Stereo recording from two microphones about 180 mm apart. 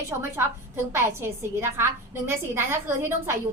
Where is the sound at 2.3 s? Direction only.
15° right (ahead or behind).